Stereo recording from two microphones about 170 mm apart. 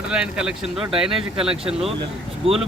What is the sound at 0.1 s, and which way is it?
Speech, 5° right (ahead or behind).